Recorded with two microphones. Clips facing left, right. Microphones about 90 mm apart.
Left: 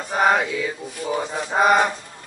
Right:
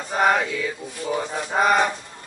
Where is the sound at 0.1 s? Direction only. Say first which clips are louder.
Left 1 dB; 15° left (ahead or behind).